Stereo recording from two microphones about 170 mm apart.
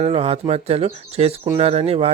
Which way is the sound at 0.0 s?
35° right (ahead or behind).